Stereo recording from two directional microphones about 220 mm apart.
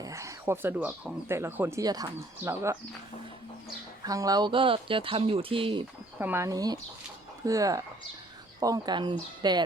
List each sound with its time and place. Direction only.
0.0 s speech: 15° right (ahead or behind)
4.0 s speech: 15° right (ahead or behind)
6.1 s speech: 10° right (ahead or behind)